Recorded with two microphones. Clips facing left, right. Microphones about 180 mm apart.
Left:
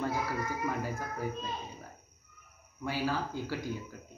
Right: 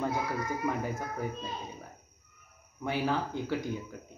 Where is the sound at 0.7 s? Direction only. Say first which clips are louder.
Right 2 dB; 20° right (ahead or behind).